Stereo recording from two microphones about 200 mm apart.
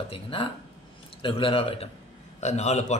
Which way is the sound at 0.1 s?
25° left (ahead or behind).